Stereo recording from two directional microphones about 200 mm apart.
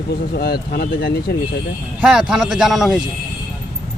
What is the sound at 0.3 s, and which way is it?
Speech, 50° left (ahead or behind).